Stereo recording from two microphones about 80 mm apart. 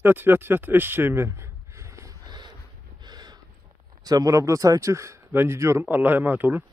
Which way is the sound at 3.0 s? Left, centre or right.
Right.